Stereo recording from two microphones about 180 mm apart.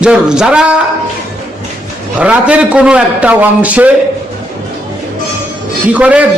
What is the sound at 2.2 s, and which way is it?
A man's voice, 5° right (ahead or behind).